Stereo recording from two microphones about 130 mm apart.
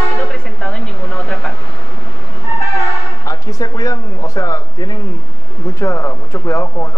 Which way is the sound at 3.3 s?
25° left (ahead or behind).